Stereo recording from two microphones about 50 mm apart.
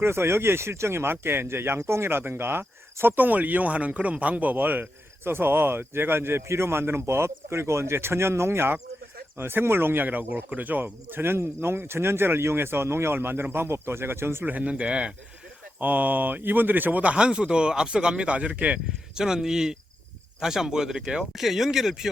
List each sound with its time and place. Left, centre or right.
0.0 s speech: right
14.4 s speech: right
15.8 s speech: right
17.0 s speech: right
19.1 s speech: centre